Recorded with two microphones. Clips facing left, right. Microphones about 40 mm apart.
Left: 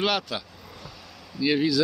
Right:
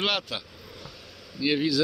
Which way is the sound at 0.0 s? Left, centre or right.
Centre.